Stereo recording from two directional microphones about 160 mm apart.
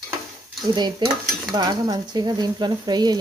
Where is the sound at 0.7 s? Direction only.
25° right (ahead or behind).